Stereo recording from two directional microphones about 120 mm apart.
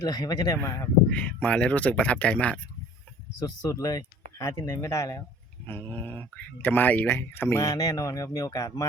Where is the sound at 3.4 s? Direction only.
30° left (ahead or behind).